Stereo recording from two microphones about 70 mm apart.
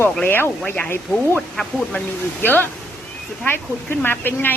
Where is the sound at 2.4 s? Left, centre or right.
Left.